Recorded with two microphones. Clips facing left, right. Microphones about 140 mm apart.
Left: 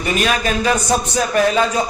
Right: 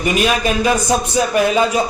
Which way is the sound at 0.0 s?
10° right (ahead or behind).